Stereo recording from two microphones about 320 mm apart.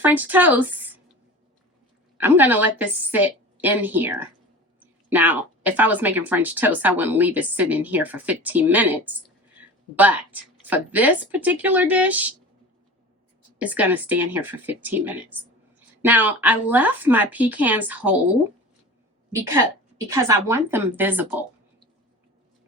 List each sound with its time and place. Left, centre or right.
0.0 s speech: centre
2.1 s a woman's voice: centre
13.6 s speech: centre
19.3 s a woman's voice: centre